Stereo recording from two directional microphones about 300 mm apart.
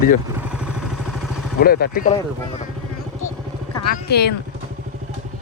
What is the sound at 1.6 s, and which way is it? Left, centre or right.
Speech, left.